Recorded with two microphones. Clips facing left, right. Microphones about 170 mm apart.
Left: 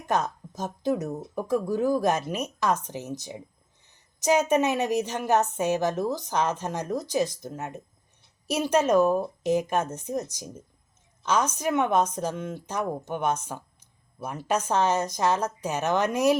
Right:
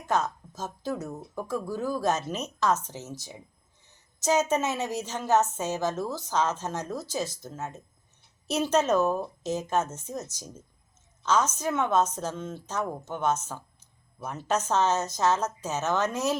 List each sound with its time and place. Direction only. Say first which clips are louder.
0.0 s a woman's voice: left 1 dB; 15° left (ahead or behind)